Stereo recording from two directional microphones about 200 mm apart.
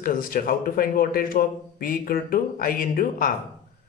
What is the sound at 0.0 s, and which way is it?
Speech, 45° left (ahead or behind).